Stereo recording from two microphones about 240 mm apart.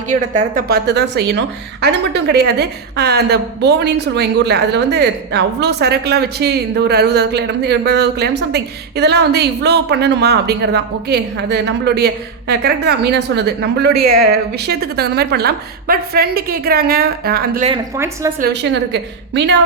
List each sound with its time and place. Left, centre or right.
0.1 s a woman's voice: right
17.9 s a woman's voice: centre
18.3 s a woman's voice: right